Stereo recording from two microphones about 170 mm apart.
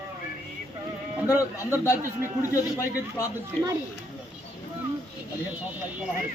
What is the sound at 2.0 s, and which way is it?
Speech, 15° right (ahead or behind).